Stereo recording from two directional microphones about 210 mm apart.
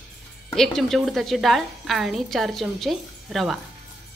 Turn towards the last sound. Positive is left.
turn(degrees=0)  # may be behind; listen again after turning